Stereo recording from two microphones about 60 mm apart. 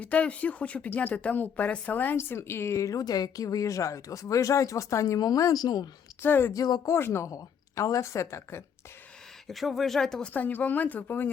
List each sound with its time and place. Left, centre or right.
0.0 s a woman's voice: left
2.1 s speech: left
6.2 s a woman's voice: left
6.5 s speech: left
6.9 s speech: left
7.3 s speech: left
9.5 s speech: centre
10.3 s a woman's voice: left